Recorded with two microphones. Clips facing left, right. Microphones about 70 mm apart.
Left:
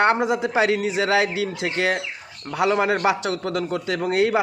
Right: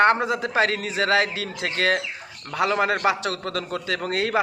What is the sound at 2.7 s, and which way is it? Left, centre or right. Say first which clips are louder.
Speech: left 3 dB; right.